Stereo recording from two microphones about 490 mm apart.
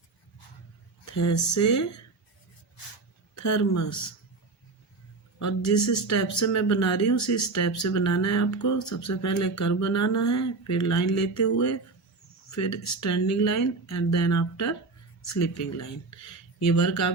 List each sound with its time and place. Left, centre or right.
1.1 s speech: left
3.3 s speech: left
5.4 s speech: left